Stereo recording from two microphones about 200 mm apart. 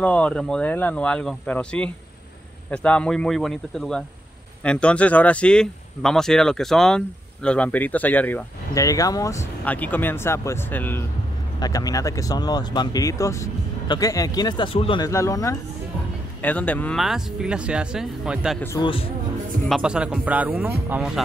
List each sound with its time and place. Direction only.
0.0 s speech: 5° left (ahead or behind)
18.6 s speech: 15° left (ahead or behind)
19.7 s speech: 5° right (ahead or behind)